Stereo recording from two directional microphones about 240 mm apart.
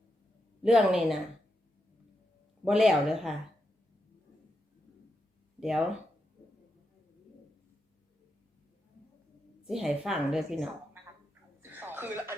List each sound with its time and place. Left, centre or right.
0.6 s a woman's voice: centre
2.6 s a woman's voice: centre
5.5 s speech: centre
9.6 s a woman's voice: centre
11.7 s a sound: centre